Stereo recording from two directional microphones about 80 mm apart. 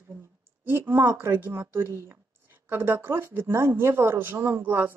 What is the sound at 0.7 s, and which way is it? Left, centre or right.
Speech, right.